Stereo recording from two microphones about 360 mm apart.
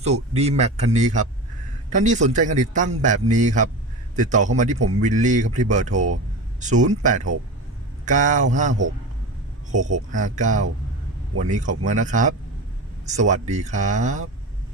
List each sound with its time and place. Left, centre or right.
0.0 s speech: centre